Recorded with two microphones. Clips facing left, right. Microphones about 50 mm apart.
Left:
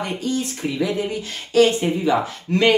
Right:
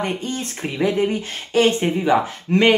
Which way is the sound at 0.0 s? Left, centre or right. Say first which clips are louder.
Left 1 dB; right.